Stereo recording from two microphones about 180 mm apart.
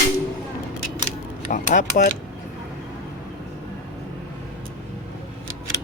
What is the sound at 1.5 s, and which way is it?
Cutlery, 45° left (ahead or behind).